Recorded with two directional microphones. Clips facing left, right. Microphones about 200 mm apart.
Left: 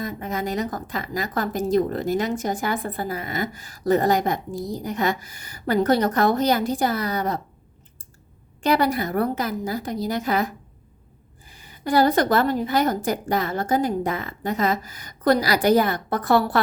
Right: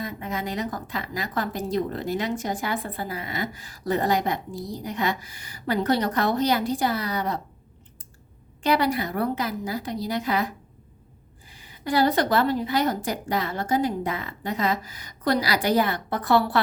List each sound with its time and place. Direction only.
0.0 s a woman's voice: 45° left (ahead or behind)
8.6 s a woman's voice: 45° left (ahead or behind)